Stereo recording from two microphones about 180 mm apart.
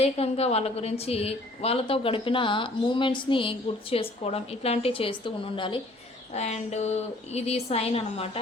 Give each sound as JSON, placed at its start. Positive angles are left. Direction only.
{"t": 0.0, "sound": "a woman's voice", "side_deg": 35}
{"t": 6.3, "sound": "a woman's voice", "side_deg": 40}